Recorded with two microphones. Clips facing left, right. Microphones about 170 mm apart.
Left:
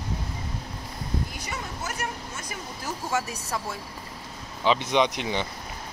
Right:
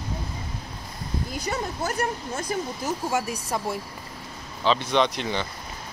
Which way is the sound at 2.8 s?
15° right (ahead or behind).